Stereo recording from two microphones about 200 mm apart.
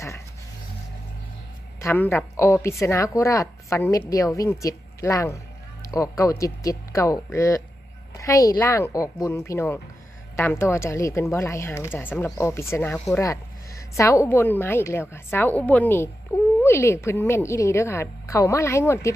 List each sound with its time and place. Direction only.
1.8 s a woman's voice: 10° left (ahead or behind)